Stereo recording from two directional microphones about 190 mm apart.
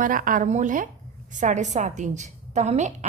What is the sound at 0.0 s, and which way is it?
A woman's voice, 45° right (ahead or behind).